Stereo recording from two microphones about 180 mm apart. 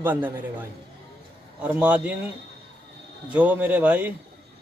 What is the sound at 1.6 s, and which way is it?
A man's voice, 5° right (ahead or behind).